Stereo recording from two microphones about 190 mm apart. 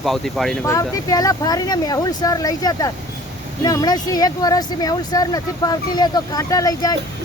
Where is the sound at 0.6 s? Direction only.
15° left (ahead or behind).